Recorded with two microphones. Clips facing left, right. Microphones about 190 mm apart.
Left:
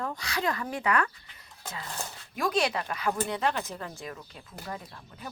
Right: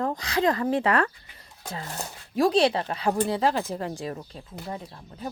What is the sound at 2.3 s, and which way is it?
A woman's voice, 30° right (ahead or behind).